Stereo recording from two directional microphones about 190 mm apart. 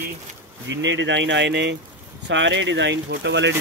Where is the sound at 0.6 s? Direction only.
75° right (ahead or behind).